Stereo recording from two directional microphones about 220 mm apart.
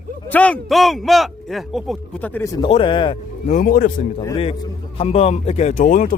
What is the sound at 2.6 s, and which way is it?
Speech, 25° left (ahead or behind).